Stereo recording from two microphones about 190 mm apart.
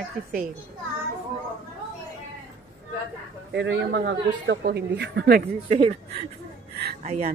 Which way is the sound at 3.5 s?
65° right (ahead or behind).